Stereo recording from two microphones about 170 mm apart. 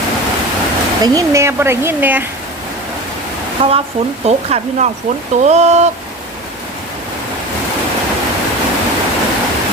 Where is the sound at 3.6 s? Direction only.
30° right (ahead or behind).